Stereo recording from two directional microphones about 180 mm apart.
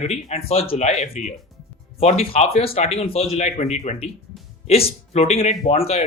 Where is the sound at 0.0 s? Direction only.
40° left (ahead or behind).